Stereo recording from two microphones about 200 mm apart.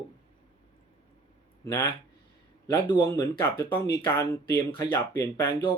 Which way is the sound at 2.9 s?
15° left (ahead or behind).